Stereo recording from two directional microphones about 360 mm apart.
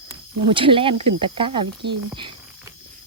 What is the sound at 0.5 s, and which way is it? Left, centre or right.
Speech, centre.